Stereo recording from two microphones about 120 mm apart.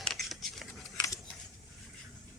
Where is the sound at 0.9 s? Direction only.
25° left (ahead or behind).